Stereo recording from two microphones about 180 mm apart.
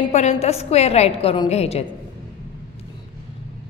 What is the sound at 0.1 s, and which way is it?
A woman's voice, 40° left (ahead or behind).